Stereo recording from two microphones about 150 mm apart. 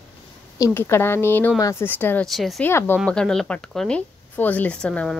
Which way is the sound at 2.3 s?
Centre (ahead or behind).